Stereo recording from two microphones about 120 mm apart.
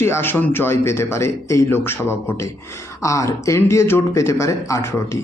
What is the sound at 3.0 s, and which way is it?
Speech, 25° left (ahead or behind).